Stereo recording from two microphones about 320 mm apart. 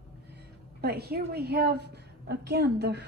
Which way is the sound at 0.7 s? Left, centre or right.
Right.